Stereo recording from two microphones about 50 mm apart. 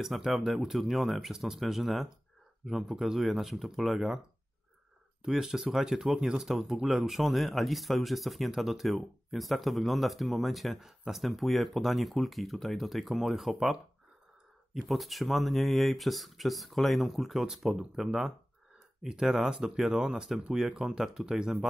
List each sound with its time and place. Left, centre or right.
0.0 s speech: centre
5.2 s speech: centre
14.7 s speech: centre